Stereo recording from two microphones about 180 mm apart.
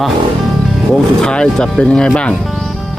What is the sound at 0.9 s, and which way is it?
Speech, 5° left (ahead or behind).